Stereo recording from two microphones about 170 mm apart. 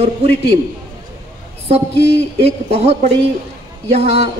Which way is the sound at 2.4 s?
35° right (ahead or behind).